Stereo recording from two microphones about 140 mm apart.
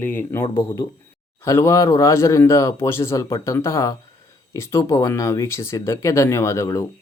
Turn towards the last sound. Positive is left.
turn(degrees=20)  # may be behind; listen again after turning